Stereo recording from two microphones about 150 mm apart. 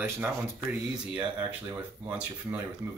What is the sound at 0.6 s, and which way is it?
Speech, 10° right (ahead or behind).